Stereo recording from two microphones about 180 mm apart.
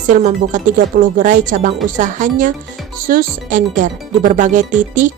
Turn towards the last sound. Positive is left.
turn(degrees=-45)  # may be behind; listen again after turning